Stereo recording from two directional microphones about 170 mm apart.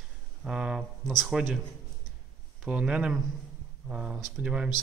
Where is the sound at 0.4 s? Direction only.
5° right (ahead or behind).